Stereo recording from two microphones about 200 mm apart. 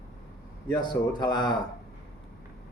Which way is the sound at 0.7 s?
20° left (ahead or behind).